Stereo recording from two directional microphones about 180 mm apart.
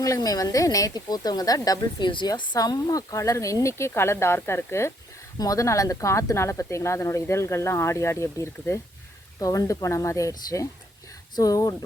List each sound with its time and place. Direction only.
0.0 s speech: 20° left (ahead or behind)